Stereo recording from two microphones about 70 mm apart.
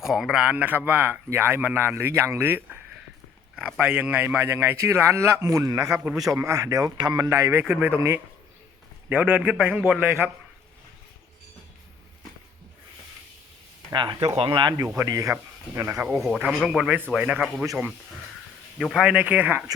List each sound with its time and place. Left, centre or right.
0.0 s a man's voice: centre
0.4 s a man's voice: right
3.8 s speech: centre
4.4 s speech: right
5.7 s speech: right
7.7 s a man's voice: right
7.9 s speech: right
9.0 s a man's voice: right
13.9 s speech: right
14.9 s speech: right
15.3 s speech: right
16.1 s speech: centre
18.8 s speech: centre
19.0 s a man's voice: right